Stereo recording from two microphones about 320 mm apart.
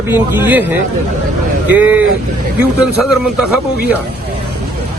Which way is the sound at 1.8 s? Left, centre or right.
Centre.